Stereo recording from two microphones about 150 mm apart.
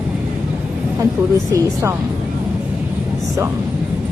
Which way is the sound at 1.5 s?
20° right (ahead or behind).